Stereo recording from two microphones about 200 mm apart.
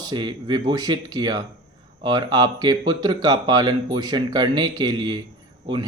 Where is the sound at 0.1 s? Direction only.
20° right (ahead or behind).